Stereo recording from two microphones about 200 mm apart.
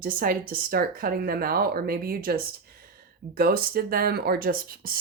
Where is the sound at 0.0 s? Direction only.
45° right (ahead or behind).